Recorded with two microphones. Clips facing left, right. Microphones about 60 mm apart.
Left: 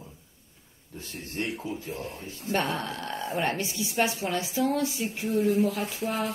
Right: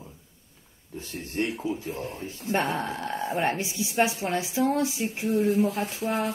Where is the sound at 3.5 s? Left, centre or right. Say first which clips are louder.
Right 2 dB; centre.